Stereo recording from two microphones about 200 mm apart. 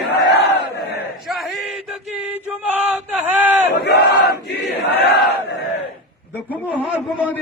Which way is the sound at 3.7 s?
55° left (ahead or behind).